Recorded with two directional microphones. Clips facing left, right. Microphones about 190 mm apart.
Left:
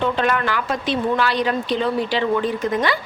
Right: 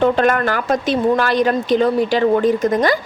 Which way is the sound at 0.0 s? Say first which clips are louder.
Right 5 dB; 45° right (ahead or behind).